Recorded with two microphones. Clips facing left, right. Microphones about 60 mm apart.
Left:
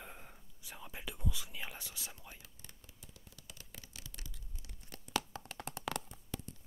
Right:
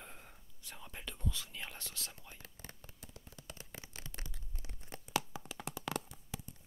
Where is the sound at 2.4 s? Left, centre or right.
Right.